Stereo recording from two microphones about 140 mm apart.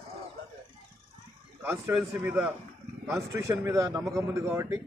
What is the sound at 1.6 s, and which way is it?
Speech, 20° right (ahead or behind).